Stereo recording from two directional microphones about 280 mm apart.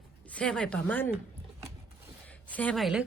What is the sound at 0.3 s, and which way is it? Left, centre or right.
Speech, centre.